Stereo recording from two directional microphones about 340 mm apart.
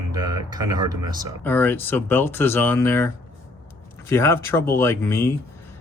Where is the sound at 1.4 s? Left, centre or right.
Centre.